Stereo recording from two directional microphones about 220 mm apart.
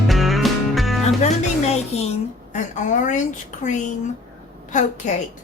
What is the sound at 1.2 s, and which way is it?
A woman's voice, 30° left (ahead or behind).